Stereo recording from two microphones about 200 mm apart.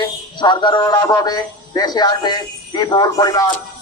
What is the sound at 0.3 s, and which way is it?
A man's voice, 25° left (ahead or behind).